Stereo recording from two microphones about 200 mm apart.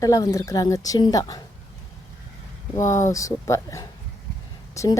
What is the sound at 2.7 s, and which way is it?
A woman's voice, 15° left (ahead or behind).